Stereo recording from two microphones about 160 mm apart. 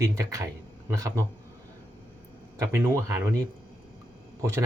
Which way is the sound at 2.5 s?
15° right (ahead or behind).